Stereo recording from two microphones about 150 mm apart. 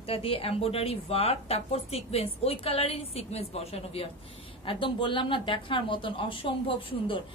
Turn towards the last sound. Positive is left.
turn(degrees=35)  # may be behind; listen again after turning